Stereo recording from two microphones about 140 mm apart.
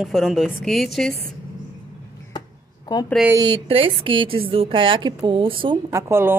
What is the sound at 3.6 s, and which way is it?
A woman's voice, 40° right (ahead or behind).